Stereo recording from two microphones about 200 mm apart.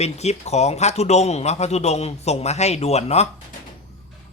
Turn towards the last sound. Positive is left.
turn(degrees=30)  # may be behind; listen again after turning